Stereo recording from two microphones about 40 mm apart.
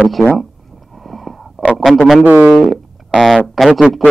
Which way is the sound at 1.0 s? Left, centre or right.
Centre.